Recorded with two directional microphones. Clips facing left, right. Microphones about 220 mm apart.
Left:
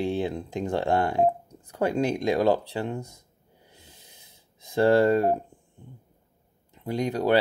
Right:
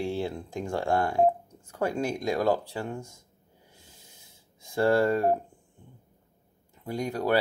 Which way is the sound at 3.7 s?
20° left (ahead or behind).